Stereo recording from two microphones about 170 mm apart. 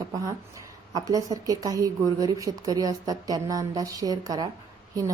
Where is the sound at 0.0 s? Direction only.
20° right (ahead or behind).